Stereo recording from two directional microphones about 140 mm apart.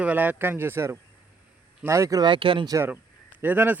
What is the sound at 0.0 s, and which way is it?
Speech, 10° right (ahead or behind).